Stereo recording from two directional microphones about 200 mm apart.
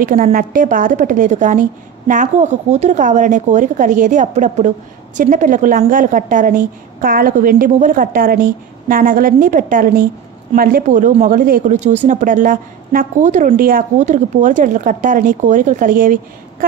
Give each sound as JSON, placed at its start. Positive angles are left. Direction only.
{"t": 0.0, "sound": "a woman's voice", "side_deg": -45}